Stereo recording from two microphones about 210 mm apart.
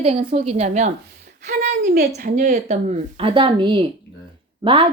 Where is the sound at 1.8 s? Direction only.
50° right (ahead or behind).